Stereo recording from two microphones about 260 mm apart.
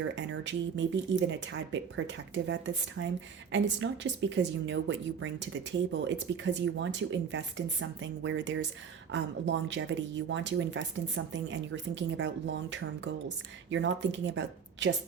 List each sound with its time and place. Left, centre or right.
0.0 s speech: right